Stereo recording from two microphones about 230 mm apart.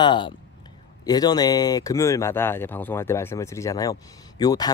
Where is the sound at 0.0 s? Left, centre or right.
Left.